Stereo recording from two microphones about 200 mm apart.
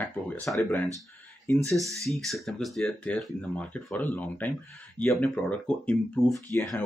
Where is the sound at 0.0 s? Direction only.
10° left (ahead or behind).